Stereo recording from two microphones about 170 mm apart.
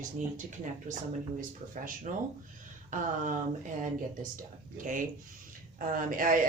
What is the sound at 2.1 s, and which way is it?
Speech, 50° right (ahead or behind).